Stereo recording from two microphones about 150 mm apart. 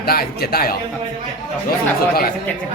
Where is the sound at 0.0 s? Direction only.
90° left.